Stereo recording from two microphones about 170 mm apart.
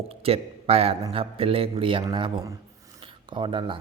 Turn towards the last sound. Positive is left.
turn(degrees=-30)  # may be behind; listen again after turning